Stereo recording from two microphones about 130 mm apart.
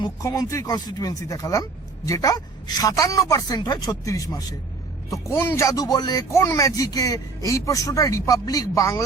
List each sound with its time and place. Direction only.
0.0 s speech: 30° left (ahead or behind)